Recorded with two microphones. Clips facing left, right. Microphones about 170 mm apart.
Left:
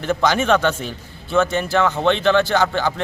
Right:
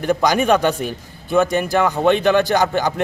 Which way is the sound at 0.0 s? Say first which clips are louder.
Right 2 dB; 15° right (ahead or behind).